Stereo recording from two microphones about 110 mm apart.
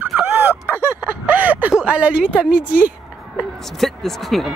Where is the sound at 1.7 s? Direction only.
10° right (ahead or behind).